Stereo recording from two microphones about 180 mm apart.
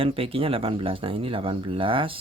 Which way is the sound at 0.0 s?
30° right (ahead or behind).